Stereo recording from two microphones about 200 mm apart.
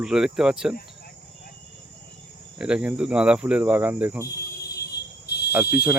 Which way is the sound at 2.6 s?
5° right (ahead or behind).